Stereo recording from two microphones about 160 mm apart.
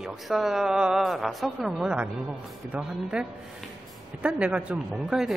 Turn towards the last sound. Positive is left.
turn(degrees=-5)  # may be behind; listen again after turning